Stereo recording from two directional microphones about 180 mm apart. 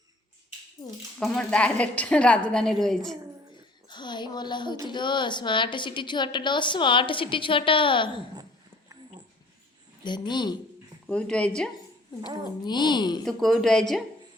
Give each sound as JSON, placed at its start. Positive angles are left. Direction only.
{"t": 1.2, "sound": "a woman's voice", "side_deg": 0}
{"t": 3.5, "sound": "a woman's voice", "side_deg": 25}
{"t": 10.0, "sound": "a woman's voice", "side_deg": 25}
{"t": 11.0, "sound": "a woman's voice", "side_deg": 5}
{"t": 12.6, "sound": "a woman's voice", "side_deg": 25}
{"t": 13.2, "sound": "a woman's voice", "side_deg": 0}